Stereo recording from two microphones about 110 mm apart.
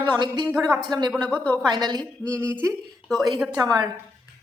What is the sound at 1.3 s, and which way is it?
Speech, 20° left (ahead or behind).